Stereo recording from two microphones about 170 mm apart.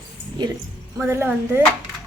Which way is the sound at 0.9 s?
15° right (ahead or behind).